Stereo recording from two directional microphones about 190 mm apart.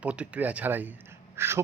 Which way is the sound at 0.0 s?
5° right (ahead or behind).